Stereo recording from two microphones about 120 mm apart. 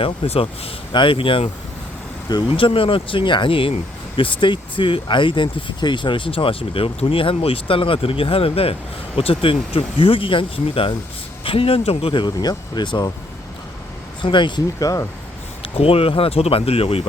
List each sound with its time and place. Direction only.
0.0 s speech: 55° left (ahead or behind)
2.5 s speech: 50° left (ahead or behind)
14.2 s speech: 40° left (ahead or behind)
15.6 s speech: 50° left (ahead or behind)